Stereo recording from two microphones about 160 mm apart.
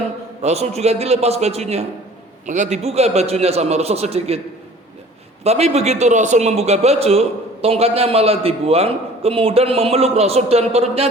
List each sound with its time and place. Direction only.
0.4 s a man's voice: 45° right (ahead or behind)
5.4 s a man's voice: 40° right (ahead or behind)